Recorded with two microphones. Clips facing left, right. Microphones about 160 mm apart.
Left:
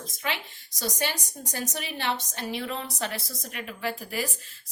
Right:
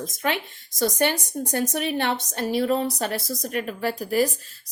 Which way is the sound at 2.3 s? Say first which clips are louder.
Right 10 dB; 40° right (ahead or behind).